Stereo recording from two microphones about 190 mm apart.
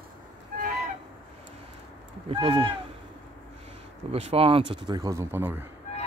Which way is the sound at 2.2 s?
25° right (ahead or behind).